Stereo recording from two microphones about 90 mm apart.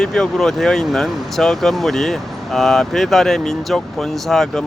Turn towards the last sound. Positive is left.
turn(degrees=5)  # may be behind; listen again after turning